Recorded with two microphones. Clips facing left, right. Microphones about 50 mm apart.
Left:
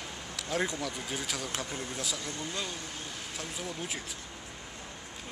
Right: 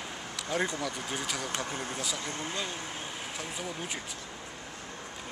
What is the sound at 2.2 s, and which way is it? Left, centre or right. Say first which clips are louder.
Speech: right 2 dB; right.